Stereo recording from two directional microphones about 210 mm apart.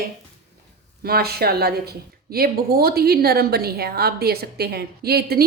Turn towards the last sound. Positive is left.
turn(degrees=-50)  # may be behind; listen again after turning